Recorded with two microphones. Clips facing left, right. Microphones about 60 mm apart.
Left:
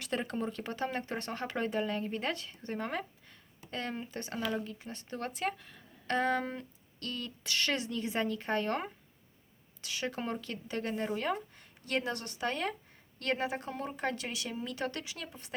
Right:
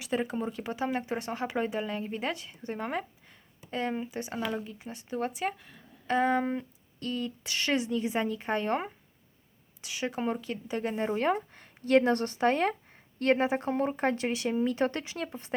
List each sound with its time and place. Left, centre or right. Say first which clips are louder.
0.0 s speech: right 4 dB; centre
11.0 s speech: right 9 dB; right